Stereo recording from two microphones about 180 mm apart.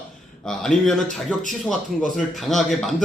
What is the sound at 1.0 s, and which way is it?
Speech, 45° right (ahead or behind).